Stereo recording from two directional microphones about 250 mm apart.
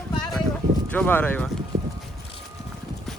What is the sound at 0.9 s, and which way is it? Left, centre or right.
Speech, centre.